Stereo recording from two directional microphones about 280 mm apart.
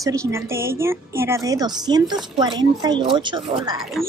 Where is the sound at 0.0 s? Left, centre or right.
Centre.